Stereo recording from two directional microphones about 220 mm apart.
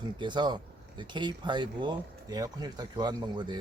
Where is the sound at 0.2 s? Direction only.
20° right (ahead or behind).